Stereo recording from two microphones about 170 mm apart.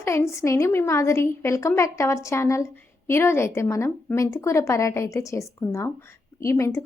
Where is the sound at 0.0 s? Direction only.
15° left (ahead or behind).